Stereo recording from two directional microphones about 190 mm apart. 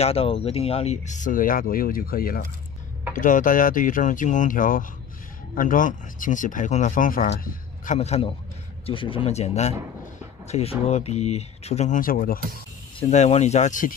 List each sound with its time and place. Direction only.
0.0 s speech: 30° left (ahead or behind); by 12.4 s 50° left (ahead or behind)
13.1 s speech: 35° left (ahead or behind)